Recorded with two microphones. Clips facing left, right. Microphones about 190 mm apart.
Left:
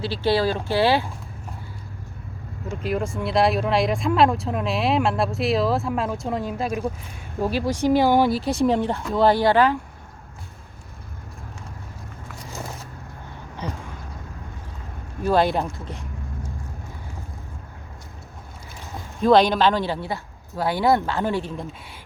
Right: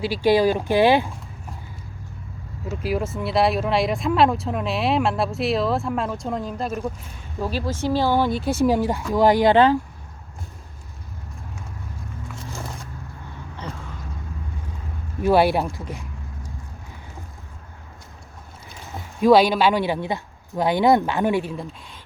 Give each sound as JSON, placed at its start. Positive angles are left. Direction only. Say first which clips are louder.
{"t": 0.0, "sound": "speech", "louder": "right 4 dB", "side_deg": -15}
{"t": 2.6, "sound": "speech", "louder": "right 1 dB", "side_deg": -5}
{"t": 8.4, "sound": "speech", "louder": "right 1 dB", "side_deg": 0}
{"t": 13.6, "sound": "vehicle", "louder": "left 3 dB", "side_deg": 10}
{"t": 15.2, "sound": "speech", "louder": "right 2 dB", "side_deg": -10}
{"t": 19.2, "sound": "speech", "louder": "right 1 dB", "side_deg": -5}
{"t": 21.5, "sound": "speech", "louder": "right 1 dB", "side_deg": 0}